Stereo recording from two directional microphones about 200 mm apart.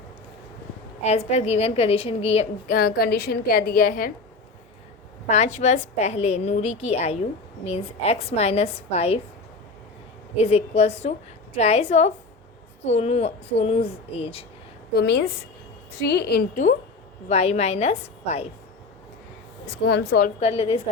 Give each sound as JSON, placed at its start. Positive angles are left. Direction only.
{"t": 1.0, "sound": "a woman's voice", "side_deg": 30}
{"t": 2.7, "sound": "a woman's voice", "side_deg": 50}
{"t": 5.3, "sound": "a woman's voice", "side_deg": 35}
{"t": 10.4, "sound": "a woman's voice", "side_deg": 30}
{"t": 14.9, "sound": "a woman's voice", "side_deg": 55}
{"t": 17.2, "sound": "a woman's voice", "side_deg": 35}
{"t": 19.6, "sound": "speech", "side_deg": 55}
{"t": 20.4, "sound": "a woman's voice", "side_deg": 30}